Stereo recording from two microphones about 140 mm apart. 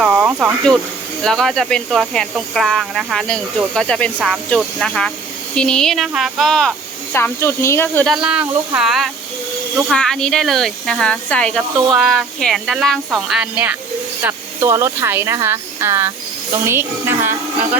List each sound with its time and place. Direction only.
0.0 s a sound: 10° right (ahead or behind)
1.2 s speech: centre (ahead or behind)
7.1 s speech: 15° left (ahead or behind)
8.0 s speech: 5° right (ahead or behind)
14.2 s a woman's voice: 20° right (ahead or behind)